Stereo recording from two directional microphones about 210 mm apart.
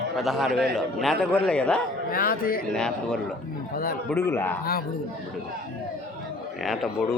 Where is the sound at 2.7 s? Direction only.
5° left (ahead or behind).